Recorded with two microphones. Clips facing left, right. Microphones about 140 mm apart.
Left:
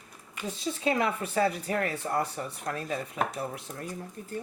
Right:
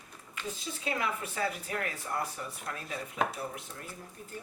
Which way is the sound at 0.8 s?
35° left (ahead or behind).